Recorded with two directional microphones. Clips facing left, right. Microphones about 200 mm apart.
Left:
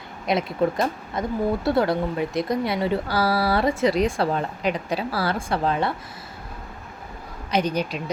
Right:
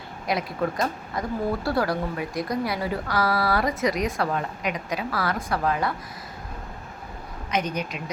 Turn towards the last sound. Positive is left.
turn(degrees=30)  # may be behind; listen again after turning